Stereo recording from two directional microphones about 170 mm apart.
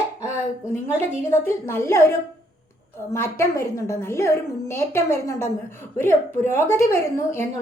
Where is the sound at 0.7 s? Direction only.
40° right (ahead or behind).